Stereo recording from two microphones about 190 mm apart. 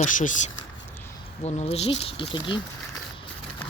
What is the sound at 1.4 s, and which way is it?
Speech, 35° left (ahead or behind).